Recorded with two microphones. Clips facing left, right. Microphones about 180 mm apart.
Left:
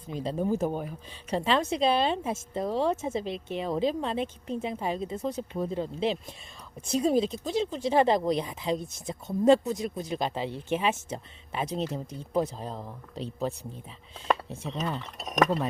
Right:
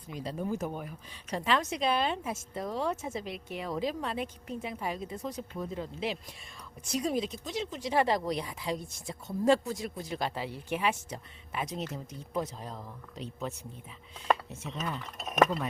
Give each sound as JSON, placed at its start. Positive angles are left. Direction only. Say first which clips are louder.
{"t": 0.1, "sound": "a woman's voice", "louder": "left 6 dB", "side_deg": 30}
{"t": 14.5, "sound": "speech", "louder": "left 4 dB", "side_deg": 30}